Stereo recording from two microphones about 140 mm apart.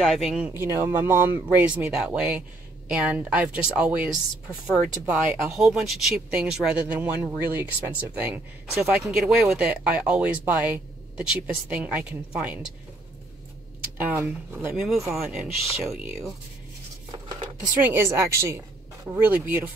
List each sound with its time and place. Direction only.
0.0 s speech: centre (ahead or behind)
0.6 s speech: 15° right (ahead or behind)
8.9 s speech: 5° right (ahead or behind)
13.9 s speech: 10° right (ahead or behind)
14.8 s speech: centre (ahead or behind)
17.7 s speech: 15° right (ahead or behind)